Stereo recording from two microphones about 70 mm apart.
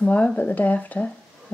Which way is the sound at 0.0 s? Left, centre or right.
Centre.